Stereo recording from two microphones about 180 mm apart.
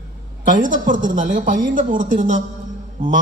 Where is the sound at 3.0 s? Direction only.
30° right (ahead or behind).